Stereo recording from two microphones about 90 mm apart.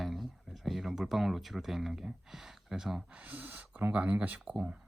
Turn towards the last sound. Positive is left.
turn(degrees=-10)  # may be behind; listen again after turning